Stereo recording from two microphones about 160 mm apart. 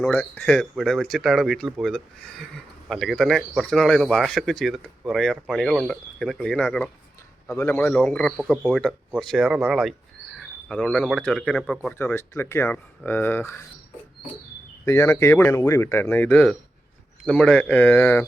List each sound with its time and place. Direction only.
0.1 s speech: 10° left (ahead or behind)
7.5 s speech: 15° left (ahead or behind)
7.9 s speech: 5° left (ahead or behind)
14.8 s speech: 15° left (ahead or behind)